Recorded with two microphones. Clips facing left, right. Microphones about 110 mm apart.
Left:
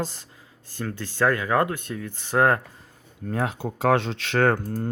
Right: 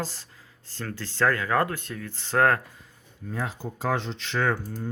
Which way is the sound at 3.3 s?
65° left (ahead or behind).